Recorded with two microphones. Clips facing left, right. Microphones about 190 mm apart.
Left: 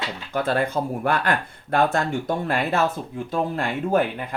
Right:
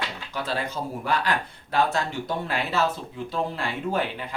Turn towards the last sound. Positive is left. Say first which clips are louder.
# left 5 dB
turn(degrees=50)  # may be behind; listen again after turning